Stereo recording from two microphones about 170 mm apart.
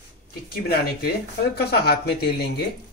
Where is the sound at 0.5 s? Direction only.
65° left (ahead or behind).